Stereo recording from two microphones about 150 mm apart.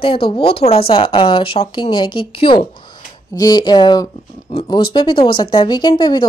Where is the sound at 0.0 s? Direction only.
35° left (ahead or behind).